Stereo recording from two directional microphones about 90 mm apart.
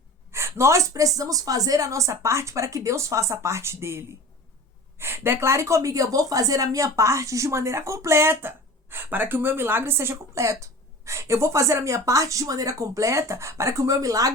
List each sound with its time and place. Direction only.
0.3 s a woman's voice: 30° right (ahead or behind)